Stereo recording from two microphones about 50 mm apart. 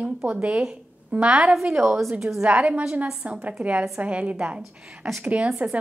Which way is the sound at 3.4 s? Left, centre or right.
Right.